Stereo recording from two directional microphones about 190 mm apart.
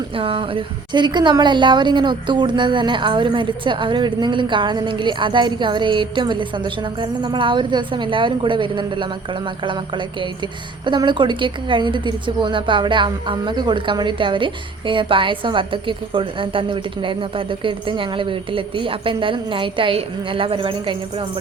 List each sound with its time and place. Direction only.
0.2 s a woman's voice: 30° right (ahead or behind)
10.8 s a woman's voice: 25° right (ahead or behind)